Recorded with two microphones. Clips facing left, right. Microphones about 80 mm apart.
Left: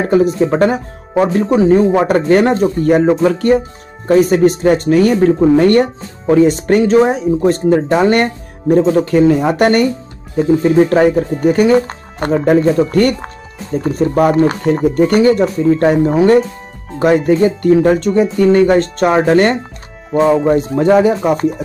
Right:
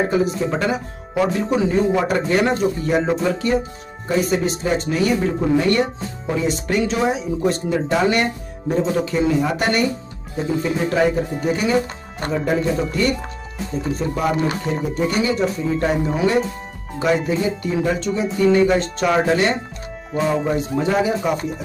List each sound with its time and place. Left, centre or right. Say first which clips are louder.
0.1 s speech: left 8 dB; left